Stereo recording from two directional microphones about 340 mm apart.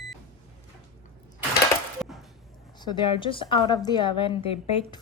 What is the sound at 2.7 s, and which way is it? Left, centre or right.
A woman's voice, centre.